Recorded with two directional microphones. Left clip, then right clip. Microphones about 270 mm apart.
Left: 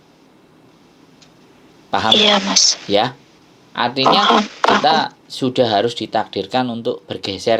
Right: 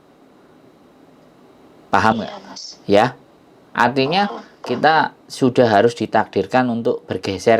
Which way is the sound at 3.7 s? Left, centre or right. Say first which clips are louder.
Right 2 dB; right.